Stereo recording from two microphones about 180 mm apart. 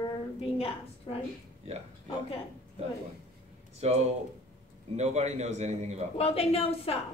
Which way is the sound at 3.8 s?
35° right (ahead or behind).